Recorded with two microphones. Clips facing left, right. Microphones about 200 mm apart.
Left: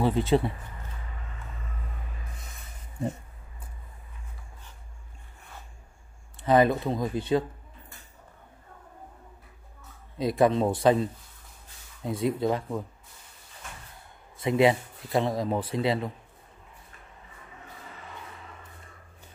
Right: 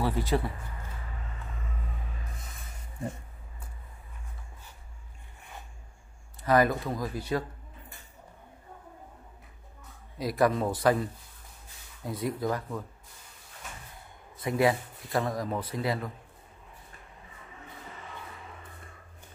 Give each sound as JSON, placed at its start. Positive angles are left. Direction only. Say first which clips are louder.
{"t": 0.0, "sound": "speech", "louder": "left 5 dB", "side_deg": 25}
{"t": 6.4, "sound": "speech", "louder": "left 3 dB", "side_deg": 25}
{"t": 10.1, "sound": "speech", "louder": "left 3 dB", "side_deg": 25}
{"t": 14.4, "sound": "speech", "louder": "left 4 dB", "side_deg": 20}